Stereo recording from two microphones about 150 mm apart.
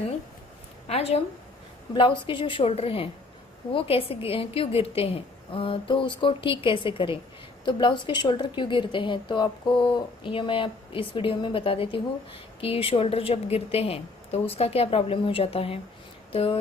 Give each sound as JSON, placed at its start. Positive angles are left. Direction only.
{"t": 0.8, "sound": "a woman's voice", "side_deg": 45}
{"t": 2.0, "sound": "speech", "side_deg": 35}